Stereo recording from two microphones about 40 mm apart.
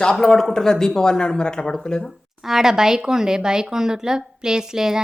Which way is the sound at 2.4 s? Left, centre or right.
Centre.